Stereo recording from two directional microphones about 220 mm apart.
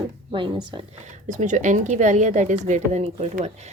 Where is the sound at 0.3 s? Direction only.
20° right (ahead or behind).